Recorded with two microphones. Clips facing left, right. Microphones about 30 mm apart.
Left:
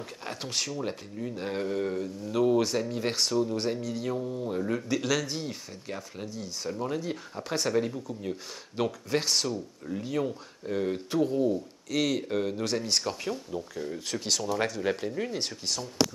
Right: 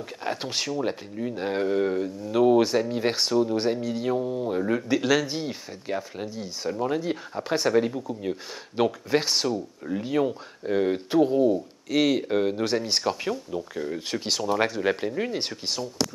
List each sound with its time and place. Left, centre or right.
0.2 s speech: centre